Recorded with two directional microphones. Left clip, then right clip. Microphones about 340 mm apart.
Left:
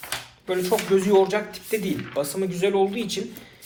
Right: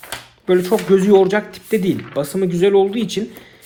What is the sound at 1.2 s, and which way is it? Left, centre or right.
Speech, right.